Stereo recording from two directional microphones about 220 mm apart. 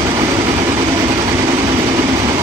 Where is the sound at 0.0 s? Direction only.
20° right (ahead or behind).